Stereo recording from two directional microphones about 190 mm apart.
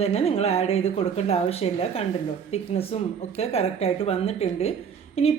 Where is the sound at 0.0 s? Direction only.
30° left (ahead or behind).